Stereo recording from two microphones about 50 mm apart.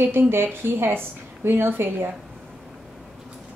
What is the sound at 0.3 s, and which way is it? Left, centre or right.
A woman's voice, right.